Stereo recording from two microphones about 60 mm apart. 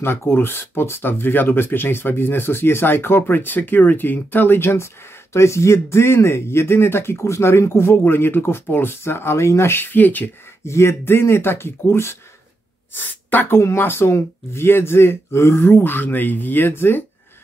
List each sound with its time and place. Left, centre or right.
0.0 s speech: left
5.3 s speech: left
10.6 s speech: left
12.9 s speech: left
13.6 s speech: left